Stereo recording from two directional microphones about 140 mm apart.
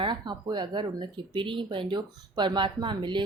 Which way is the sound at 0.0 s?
30° right (ahead or behind).